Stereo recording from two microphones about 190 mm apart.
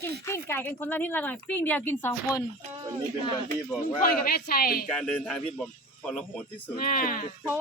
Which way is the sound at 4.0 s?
55° left (ahead or behind).